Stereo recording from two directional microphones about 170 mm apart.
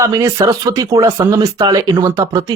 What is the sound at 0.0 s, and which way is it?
Speech, 20° right (ahead or behind).